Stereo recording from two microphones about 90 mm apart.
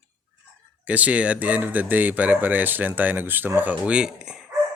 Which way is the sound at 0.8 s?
15° right (ahead or behind).